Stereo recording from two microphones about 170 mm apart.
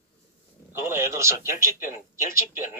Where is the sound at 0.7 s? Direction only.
15° right (ahead or behind).